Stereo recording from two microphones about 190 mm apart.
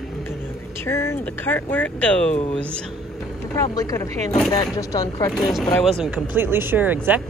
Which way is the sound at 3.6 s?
15° left (ahead or behind).